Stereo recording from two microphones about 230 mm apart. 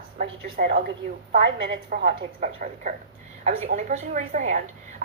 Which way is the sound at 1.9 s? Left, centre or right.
Right.